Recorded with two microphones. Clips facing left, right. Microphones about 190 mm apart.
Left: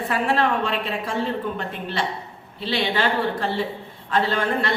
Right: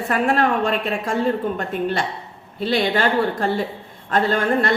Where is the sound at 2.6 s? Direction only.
45° right (ahead or behind).